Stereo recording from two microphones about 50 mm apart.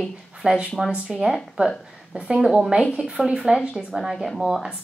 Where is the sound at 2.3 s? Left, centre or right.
Centre.